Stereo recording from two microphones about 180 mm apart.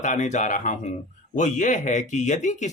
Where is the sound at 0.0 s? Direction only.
40° left (ahead or behind).